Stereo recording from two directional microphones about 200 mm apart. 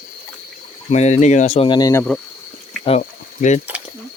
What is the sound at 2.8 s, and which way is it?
Mechanisms, 35° left (ahead or behind).